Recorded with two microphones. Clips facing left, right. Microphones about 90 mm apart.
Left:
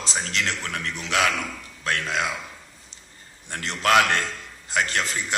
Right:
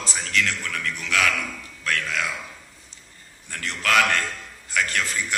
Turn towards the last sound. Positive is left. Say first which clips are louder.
# even
turn(degrees=20)  # may be behind; listen again after turning